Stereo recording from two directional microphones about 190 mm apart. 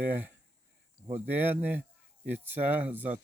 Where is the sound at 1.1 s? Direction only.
10° right (ahead or behind).